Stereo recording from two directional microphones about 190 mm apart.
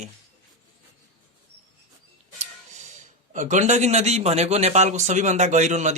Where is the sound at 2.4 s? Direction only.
40° right (ahead or behind).